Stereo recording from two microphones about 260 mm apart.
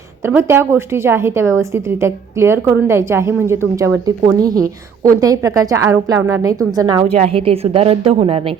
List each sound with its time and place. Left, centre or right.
0.3 s a woman's voice: centre; by 8.4 s right